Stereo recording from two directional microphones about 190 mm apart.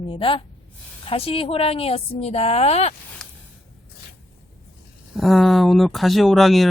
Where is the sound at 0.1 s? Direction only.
25° left (ahead or behind).